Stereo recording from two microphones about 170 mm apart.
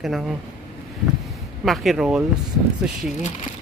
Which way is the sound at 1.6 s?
Centre (ahead or behind).